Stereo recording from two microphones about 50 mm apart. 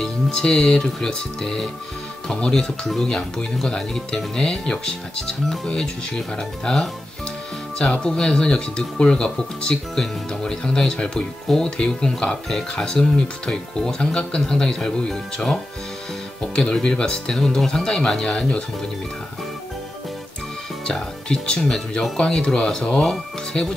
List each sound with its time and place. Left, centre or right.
0.0 s speech: centre
20.8 s speech: centre